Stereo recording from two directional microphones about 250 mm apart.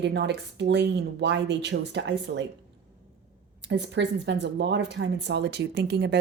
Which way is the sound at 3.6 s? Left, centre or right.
Right.